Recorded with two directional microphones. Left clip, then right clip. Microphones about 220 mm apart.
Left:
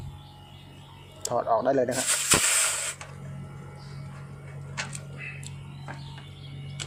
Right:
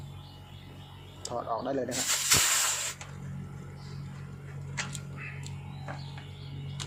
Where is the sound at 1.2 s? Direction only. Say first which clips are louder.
Left 9 dB; 20° left (ahead or behind).